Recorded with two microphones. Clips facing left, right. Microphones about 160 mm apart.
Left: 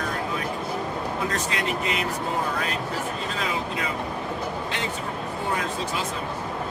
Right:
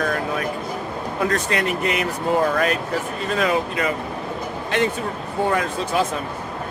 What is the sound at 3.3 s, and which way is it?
Speech, 60° right (ahead or behind).